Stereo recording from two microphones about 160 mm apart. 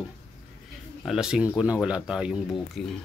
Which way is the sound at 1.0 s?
5° right (ahead or behind).